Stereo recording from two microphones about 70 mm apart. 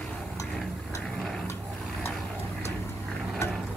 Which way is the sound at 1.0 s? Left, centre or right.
Centre.